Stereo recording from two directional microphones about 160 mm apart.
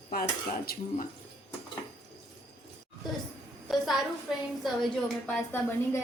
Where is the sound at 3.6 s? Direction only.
Centre (ahead or behind).